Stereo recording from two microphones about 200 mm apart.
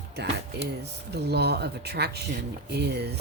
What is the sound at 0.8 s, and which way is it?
Speech, 55° right (ahead or behind).